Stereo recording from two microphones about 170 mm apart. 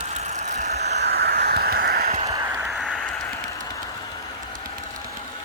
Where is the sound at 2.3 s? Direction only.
20° right (ahead or behind).